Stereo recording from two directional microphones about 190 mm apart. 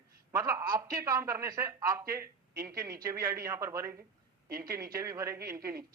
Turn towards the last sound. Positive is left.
turn(degrees=-15)  # may be behind; listen again after turning